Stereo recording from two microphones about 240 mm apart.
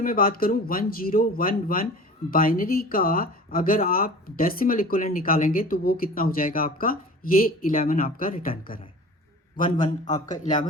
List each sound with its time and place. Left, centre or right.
0.0 s speech: left